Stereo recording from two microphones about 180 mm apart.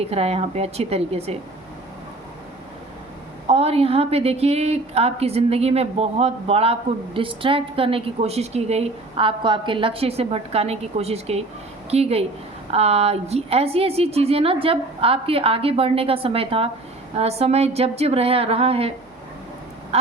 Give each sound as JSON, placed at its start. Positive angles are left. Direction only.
{"t": 0.1, "sound": "a woman's voice", "side_deg": -35}
{"t": 3.4, "sound": "a woman's voice", "side_deg": -35}
{"t": 19.9, "sound": "quack", "side_deg": -35}